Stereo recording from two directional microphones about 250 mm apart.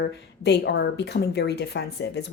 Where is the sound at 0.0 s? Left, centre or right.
Left.